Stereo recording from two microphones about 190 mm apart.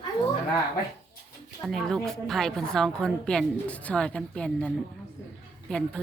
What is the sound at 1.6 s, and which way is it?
Speech, centre (ahead or behind).